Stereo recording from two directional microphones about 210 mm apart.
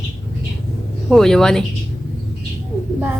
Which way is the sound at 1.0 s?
Centre (ahead or behind).